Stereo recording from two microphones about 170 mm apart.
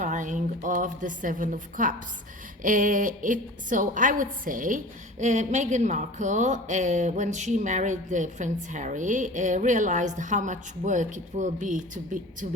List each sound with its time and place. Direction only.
0.0 s a woman's voice: 50° right (ahead or behind)